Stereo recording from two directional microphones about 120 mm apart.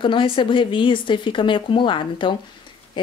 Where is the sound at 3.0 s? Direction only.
40° left (ahead or behind).